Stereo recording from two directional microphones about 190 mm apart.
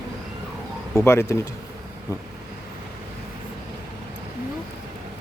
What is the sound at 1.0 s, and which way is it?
Speech, 15° left (ahead or behind).